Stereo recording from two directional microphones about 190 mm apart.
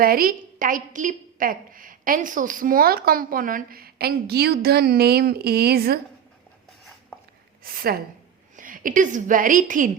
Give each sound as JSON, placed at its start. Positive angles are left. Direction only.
{"t": 0.0, "sound": "a woman's voice", "side_deg": -50}
{"t": 7.6, "sound": "a woman's voice", "side_deg": -50}